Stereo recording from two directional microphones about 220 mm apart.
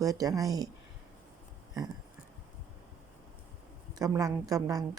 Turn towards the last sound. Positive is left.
turn(degrees=-15)  # may be behind; listen again after turning